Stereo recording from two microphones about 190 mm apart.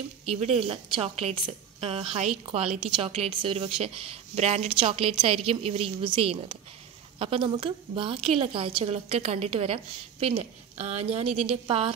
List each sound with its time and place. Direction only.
0.3 s a woman's voice: 35° right (ahead or behind)